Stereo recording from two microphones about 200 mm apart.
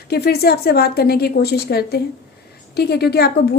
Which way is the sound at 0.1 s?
50° left (ahead or behind).